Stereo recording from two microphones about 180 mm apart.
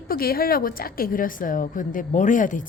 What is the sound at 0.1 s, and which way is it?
A woman's voice, 55° left (ahead or behind).